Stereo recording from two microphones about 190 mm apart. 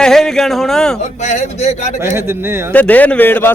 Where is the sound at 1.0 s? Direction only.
40° left (ahead or behind).